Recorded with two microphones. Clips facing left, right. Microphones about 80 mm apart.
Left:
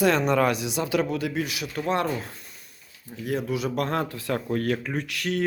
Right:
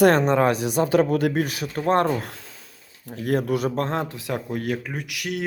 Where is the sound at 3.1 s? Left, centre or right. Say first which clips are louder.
Right 5 dB; right.